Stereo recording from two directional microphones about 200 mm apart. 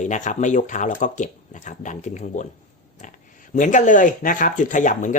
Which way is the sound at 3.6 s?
40° left (ahead or behind).